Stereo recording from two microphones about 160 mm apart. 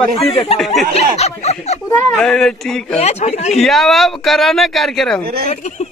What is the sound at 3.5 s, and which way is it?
Speech, centre (ahead or behind).